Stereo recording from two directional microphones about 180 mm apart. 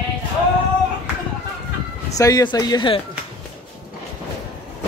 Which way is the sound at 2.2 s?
20° left (ahead or behind).